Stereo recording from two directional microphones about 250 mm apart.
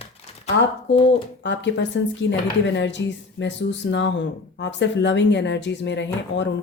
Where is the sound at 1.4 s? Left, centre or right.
Left.